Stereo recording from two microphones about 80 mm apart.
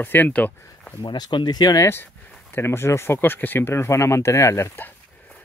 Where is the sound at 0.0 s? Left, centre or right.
Left.